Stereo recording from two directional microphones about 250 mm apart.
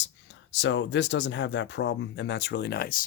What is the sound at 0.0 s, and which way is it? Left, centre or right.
Speech, left.